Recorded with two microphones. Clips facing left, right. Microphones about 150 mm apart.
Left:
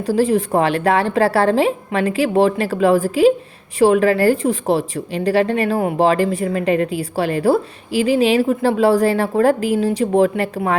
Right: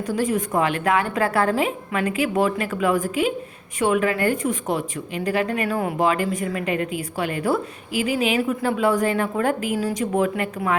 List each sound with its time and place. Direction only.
0.0 s speech: 30° left (ahead or behind)